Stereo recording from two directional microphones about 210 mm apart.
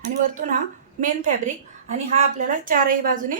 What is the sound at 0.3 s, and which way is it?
A woman's voice, 40° right (ahead or behind).